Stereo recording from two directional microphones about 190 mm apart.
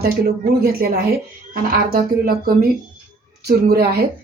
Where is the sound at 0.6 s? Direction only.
55° right (ahead or behind).